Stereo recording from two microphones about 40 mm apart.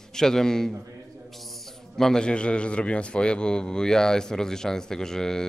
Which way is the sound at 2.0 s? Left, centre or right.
Centre.